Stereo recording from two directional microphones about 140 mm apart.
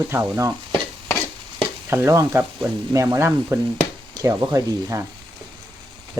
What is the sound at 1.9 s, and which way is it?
Speech, 20° right (ahead or behind).